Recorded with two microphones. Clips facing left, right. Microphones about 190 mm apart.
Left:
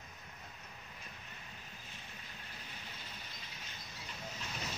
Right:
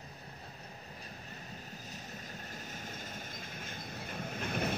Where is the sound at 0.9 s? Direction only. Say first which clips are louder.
Right 5 dB; 40° right (ahead or behind).